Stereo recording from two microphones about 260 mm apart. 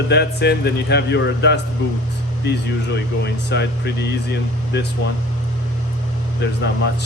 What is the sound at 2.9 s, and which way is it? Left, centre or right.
A man's voice, left.